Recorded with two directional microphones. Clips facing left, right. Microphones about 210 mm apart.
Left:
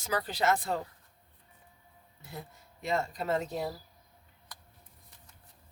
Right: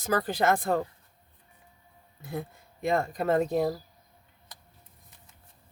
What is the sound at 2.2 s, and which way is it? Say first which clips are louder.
Speech: right 9 dB; 55° right (ahead or behind).